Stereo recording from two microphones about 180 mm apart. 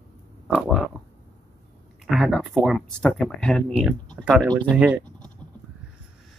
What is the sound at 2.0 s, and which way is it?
Speech, centre (ahead or behind).